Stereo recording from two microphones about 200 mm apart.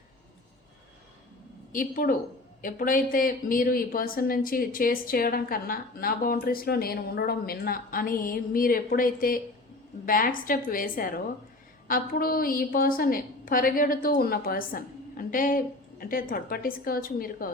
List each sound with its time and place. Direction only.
1.7 s a woman's voice: 45° left (ahead or behind)